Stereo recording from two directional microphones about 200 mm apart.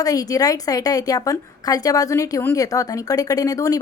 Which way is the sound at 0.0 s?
15° left (ahead or behind).